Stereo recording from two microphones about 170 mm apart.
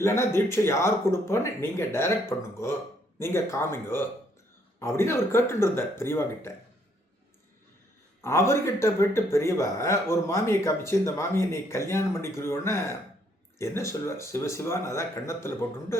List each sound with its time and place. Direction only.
0.0 s speech: 15° left (ahead or behind)
3.2 s speech: 15° left (ahead or behind)
8.2 s speech: 15° left (ahead or behind)